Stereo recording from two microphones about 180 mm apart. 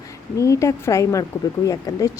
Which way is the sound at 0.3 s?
15° left (ahead or behind).